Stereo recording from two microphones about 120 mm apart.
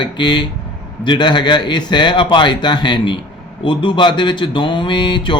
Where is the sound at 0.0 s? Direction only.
40° left (ahead or behind).